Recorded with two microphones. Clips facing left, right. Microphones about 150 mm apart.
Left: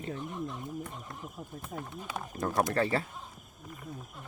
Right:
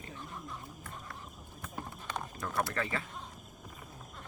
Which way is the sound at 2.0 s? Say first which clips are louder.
Even; 5° left (ahead or behind).